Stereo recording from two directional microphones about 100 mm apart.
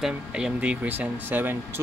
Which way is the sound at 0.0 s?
10° right (ahead or behind).